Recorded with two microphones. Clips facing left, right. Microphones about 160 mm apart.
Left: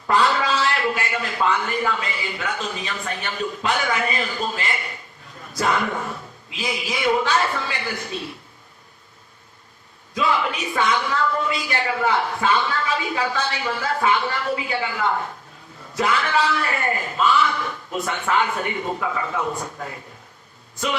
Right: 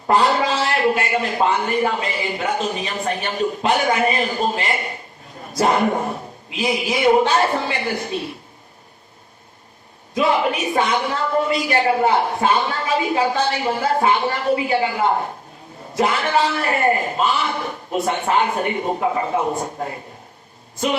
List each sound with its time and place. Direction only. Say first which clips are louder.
0.1 s a sound: right 3 dB; 45° right (ahead or behind)
1.5 s a man's voice: right 4 dB; 45° right (ahead or behind)
10.2 s a man's voice: right 4 dB; 50° right (ahead or behind)